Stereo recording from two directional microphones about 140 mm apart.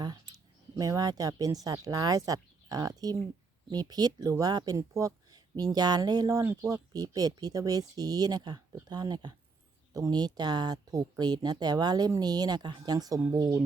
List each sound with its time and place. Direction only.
0.8 s speech: 25° right (ahead or behind)